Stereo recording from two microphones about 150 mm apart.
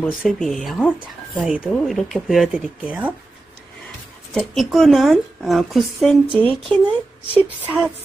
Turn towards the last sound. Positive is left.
turn(degrees=-10)  # may be behind; listen again after turning